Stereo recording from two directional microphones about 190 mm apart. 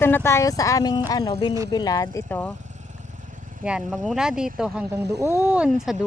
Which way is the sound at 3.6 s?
5° right (ahead or behind).